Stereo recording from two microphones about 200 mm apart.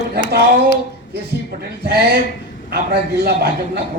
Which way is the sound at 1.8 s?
55° right (ahead or behind).